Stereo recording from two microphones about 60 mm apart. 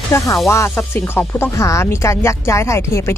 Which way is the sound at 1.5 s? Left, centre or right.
Left.